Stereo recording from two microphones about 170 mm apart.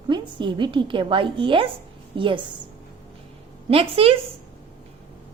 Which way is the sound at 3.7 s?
35° right (ahead or behind).